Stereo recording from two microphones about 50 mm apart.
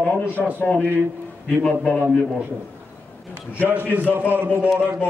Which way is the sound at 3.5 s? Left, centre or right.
Right.